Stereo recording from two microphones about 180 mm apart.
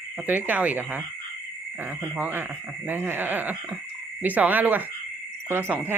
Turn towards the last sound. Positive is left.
turn(degrees=-10)  # may be behind; listen again after turning